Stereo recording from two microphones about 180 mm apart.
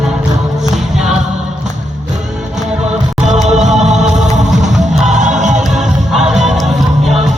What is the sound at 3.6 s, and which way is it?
Music, 40° right (ahead or behind).